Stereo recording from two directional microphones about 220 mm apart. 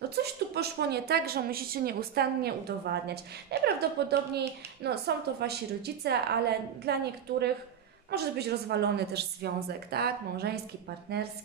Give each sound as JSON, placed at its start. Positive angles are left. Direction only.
{"t": 0.1, "sound": "a woman's voice", "side_deg": -45}